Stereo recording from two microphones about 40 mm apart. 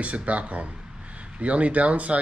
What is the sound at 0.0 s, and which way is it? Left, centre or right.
Speech, right.